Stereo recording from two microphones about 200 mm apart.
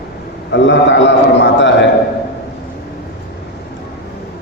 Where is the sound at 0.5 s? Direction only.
65° left (ahead or behind).